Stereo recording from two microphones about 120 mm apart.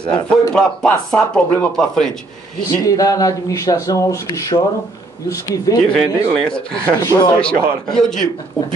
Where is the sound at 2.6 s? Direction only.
30° left (ahead or behind).